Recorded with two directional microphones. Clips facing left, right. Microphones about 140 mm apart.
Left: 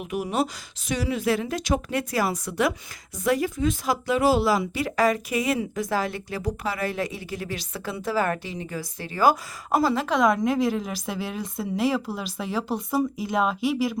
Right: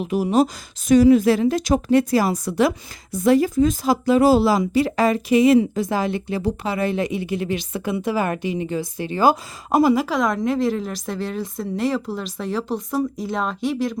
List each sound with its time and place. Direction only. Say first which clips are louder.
0.0 s a woman's voice: right 7 dB; 35° right (ahead or behind)
9.9 s a woman's voice: right 2 dB; 5° right (ahead or behind)